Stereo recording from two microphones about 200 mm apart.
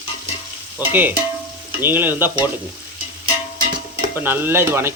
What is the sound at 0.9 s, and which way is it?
A man's voice, 10° right (ahead or behind).